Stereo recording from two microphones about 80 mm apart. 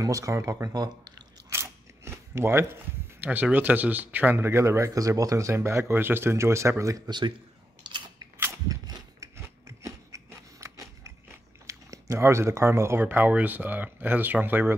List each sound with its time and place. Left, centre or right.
0.0 s speech: right
0.7 s speech: right
1.5 s a sound: right
3.3 s speech: centre; by 7.0 s right
7.1 s speech: right
7.8 s scissors: right
8.6 s cap gun: right
9.2 s scissors: right
11.6 s typing: right
13.0 s speech: right